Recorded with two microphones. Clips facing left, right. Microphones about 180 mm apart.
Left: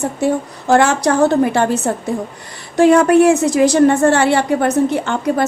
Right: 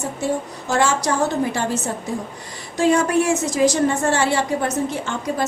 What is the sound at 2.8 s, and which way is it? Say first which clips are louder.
A woman's voice: left 8 dB; 60° left (ahead or behind).